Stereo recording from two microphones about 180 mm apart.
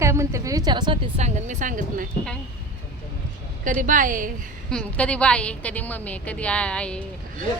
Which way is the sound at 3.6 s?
45° right (ahead or behind).